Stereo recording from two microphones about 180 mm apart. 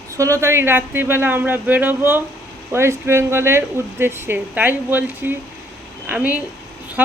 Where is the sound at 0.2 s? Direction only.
15° right (ahead or behind).